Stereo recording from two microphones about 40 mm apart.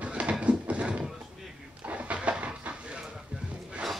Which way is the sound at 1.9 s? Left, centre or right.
Right.